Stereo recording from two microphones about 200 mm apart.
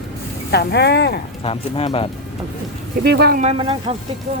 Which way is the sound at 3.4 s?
25° right (ahead or behind).